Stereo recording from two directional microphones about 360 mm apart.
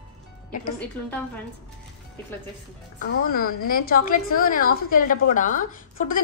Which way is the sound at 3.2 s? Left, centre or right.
Left.